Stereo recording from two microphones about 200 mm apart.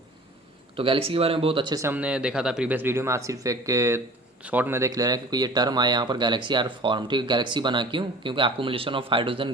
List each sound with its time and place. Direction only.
0.8 s speech: 25° right (ahead or behind)